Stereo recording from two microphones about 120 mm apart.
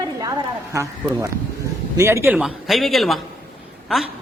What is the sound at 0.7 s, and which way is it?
A woman's voice, 25° right (ahead or behind).